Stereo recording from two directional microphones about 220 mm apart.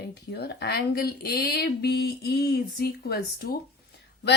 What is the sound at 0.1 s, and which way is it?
A woman's voice, 45° left (ahead or behind).